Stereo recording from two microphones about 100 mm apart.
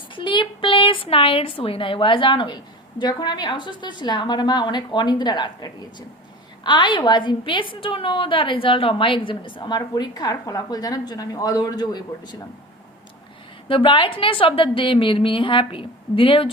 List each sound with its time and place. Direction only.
0.2 s a woman's voice: 55° left (ahead or behind)
13.7 s a woman's voice: 60° left (ahead or behind)